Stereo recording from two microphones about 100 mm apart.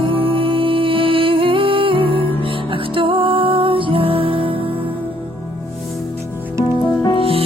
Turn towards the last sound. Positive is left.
turn(degrees=-70)  # may be behind; listen again after turning